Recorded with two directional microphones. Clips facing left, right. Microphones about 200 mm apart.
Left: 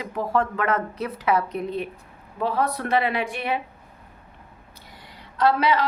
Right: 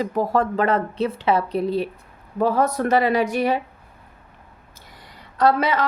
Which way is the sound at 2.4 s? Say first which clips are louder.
Right 5 dB; 45° right (ahead or behind).